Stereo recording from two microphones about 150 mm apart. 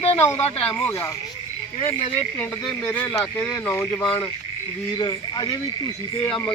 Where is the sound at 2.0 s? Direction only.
45° left (ahead or behind).